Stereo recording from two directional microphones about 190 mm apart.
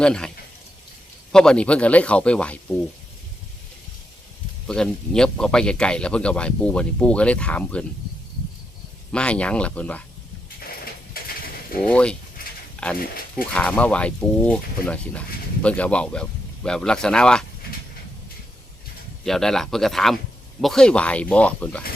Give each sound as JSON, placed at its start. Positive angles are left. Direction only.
{"t": 0.0, "sound": "speech", "side_deg": 5}
{"t": 1.3, "sound": "speech", "side_deg": 5}
{"t": 4.7, "sound": "speech", "side_deg": 5}
{"t": 9.1, "sound": "speech", "side_deg": 5}
{"t": 11.8, "sound": "speech", "side_deg": 5}
{"t": 12.4, "sound": "a sound", "side_deg": 50}
{"t": 12.7, "sound": "a sound", "side_deg": 5}
{"t": 13.3, "sound": "speech", "side_deg": 5}
{"t": 19.2, "sound": "speech", "side_deg": 0}